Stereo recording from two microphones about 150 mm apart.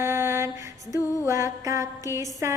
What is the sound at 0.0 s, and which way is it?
Music, 15° right (ahead or behind).